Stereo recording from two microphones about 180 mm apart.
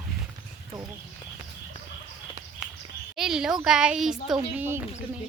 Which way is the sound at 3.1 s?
5° right (ahead or behind).